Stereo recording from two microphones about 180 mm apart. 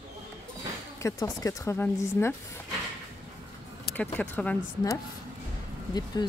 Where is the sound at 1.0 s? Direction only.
20° left (ahead or behind).